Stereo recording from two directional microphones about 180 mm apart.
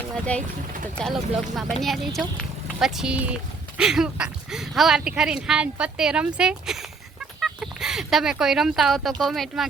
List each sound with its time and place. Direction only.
0.3 s speech: 5° left (ahead or behind)
7.3 s fowl: centre (ahead or behind)
9.2 s speech: centre (ahead or behind)